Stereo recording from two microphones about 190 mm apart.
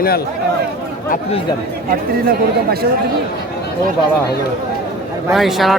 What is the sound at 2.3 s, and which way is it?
Speech, 55° right (ahead or behind).